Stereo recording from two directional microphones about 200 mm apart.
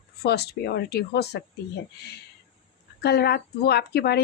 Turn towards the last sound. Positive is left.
turn(degrees=55)  # may be behind; listen again after turning